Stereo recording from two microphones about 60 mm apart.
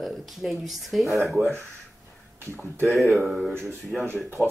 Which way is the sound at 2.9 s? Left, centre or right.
Centre.